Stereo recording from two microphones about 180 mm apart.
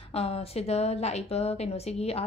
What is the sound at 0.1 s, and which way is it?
A woman's voice, 35° left (ahead or behind).